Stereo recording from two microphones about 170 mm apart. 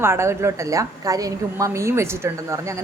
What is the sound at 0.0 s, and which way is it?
A woman's voice, 15° right (ahead or behind).